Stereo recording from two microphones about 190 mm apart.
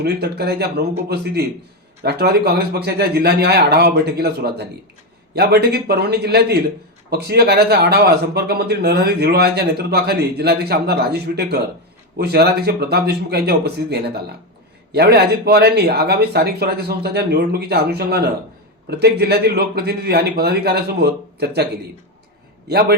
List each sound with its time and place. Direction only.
0.0 s a man's voice: 55° right (ahead or behind)